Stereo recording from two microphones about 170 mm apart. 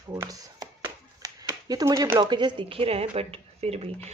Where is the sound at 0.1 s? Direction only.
20° right (ahead or behind).